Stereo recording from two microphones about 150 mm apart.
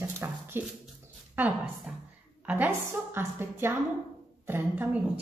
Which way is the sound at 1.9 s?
5° right (ahead or behind).